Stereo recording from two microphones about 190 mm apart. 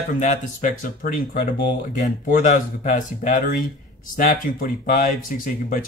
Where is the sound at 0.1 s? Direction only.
40° left (ahead or behind).